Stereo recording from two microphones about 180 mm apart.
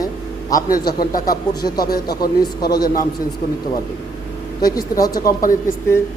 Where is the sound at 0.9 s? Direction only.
55° left (ahead or behind).